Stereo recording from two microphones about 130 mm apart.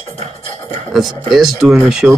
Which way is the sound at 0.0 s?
60° right (ahead or behind).